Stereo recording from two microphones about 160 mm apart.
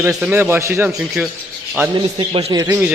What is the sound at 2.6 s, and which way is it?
Speech, 15° right (ahead or behind).